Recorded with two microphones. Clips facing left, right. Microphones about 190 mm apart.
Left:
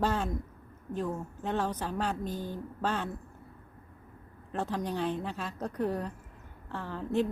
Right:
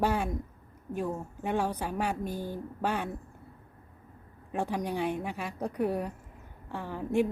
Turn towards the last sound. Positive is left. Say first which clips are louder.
# right 2 dB
turn(degrees=-15)  # may be behind; listen again after turning